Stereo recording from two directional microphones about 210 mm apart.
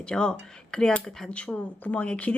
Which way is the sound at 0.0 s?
5° left (ahead or behind).